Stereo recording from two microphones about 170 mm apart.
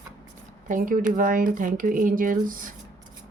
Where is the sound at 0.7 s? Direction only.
55° right (ahead or behind).